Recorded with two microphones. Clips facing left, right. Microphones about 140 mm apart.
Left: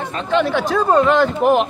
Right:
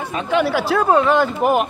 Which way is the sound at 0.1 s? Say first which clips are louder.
Even; 10° right (ahead or behind).